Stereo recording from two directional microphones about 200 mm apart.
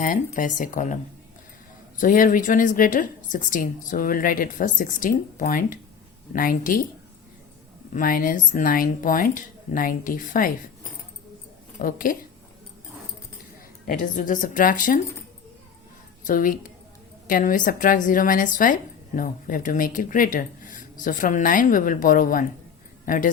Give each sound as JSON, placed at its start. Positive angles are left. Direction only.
{"t": 0.0, "sound": "speech", "side_deg": 40}
{"t": 2.0, "sound": "speech", "side_deg": 40}
{"t": 7.9, "sound": "speech", "side_deg": 45}
{"t": 11.8, "sound": "speech", "side_deg": 45}
{"t": 13.8, "sound": "speech", "side_deg": 40}
{"t": 16.2, "sound": "a woman's voice", "side_deg": 45}